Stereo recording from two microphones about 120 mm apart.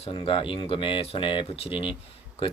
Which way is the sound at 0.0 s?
50° left (ahead or behind).